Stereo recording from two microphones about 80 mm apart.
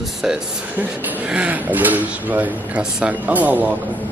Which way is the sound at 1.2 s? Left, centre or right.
Centre.